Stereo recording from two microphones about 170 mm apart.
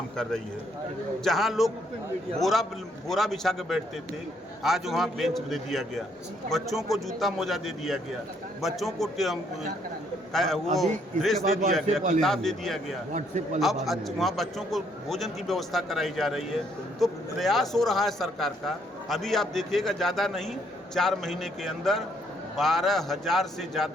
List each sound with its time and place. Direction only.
1.2 s a man's voice: centre (ahead or behind)
13.1 s a man's voice: 45° right (ahead or behind)
13.6 s a man's voice: centre (ahead or behind)